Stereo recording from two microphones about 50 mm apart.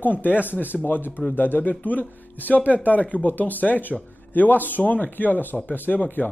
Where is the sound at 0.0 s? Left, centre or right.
Left.